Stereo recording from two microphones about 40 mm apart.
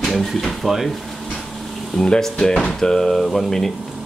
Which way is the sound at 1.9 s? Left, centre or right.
Centre.